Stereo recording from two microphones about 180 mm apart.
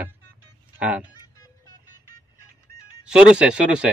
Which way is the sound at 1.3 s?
20° left (ahead or behind).